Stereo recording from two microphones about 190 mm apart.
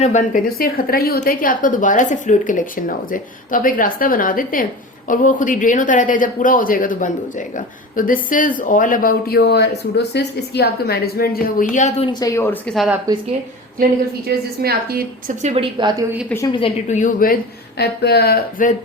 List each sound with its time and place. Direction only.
0.0 s speech: 40° left (ahead or behind)
11.7 s a woman's voice: 40° left (ahead or behind)
12.2 s a woman's voice: 15° left (ahead or behind)
14.3 s a woman's voice: 55° right (ahead or behind)
15.4 s a woman's voice: 35° right (ahead or behind)
16.5 s a woman's voice: 25° left (ahead or behind)
16.9 s speech: 40° left (ahead or behind)
17.7 s speech: 60° left (ahead or behind)